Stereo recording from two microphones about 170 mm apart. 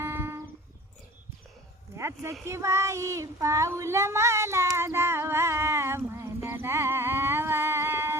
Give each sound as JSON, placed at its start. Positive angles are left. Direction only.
{"t": 0.0, "sound": "a sound", "side_deg": -15}
{"t": 2.0, "sound": "speech", "side_deg": -15}
{"t": 2.4, "sound": "child singing", "side_deg": -15}